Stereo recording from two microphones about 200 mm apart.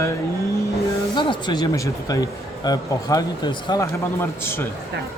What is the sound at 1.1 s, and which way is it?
A man's voice, 20° left (ahead or behind).